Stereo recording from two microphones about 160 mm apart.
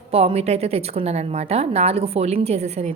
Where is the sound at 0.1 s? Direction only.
40° right (ahead or behind).